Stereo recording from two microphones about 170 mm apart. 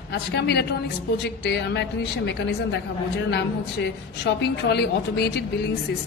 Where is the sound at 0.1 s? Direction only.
80° left.